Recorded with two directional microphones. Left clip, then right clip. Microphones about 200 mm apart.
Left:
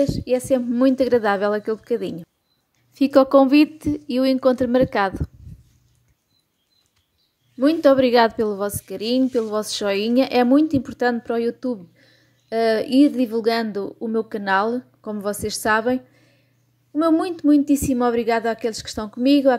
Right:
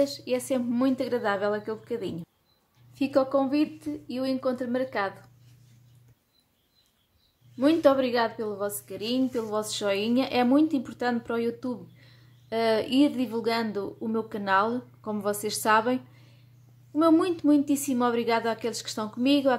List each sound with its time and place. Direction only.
0.0 s a woman's voice: 20° left (ahead or behind); by 5.1 s 35° left (ahead or behind)
7.5 s a woman's voice: 25° left (ahead or behind)